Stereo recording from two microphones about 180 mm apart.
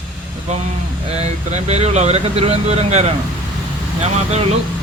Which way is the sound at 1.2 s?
35° right (ahead or behind).